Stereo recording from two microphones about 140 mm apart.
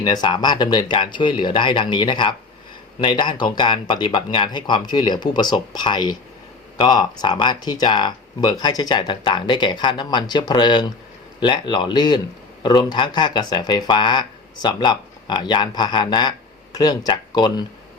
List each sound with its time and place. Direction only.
0.0 s speech: 30° left (ahead or behind)